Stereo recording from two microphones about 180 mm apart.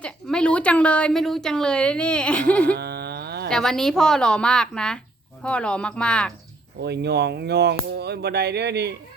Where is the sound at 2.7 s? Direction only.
65° right (ahead or behind).